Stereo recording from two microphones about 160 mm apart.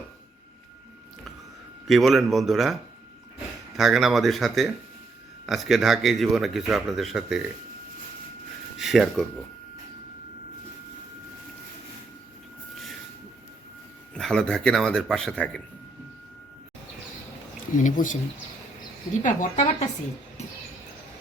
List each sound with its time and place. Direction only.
1.9 s speech: centre (ahead or behind)
3.8 s speech: centre (ahead or behind)
8.8 s speech: centre (ahead or behind)
12.7 s vehicle: centre (ahead or behind)
14.1 s speech: 5° left (ahead or behind)
17.7 s a woman's voice: 55° left (ahead or behind)
19.2 s a woman's voice: 50° left (ahead or behind)